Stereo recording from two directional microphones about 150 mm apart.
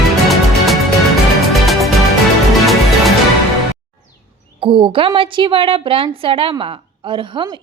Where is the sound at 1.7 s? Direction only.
Centre (ahead or behind).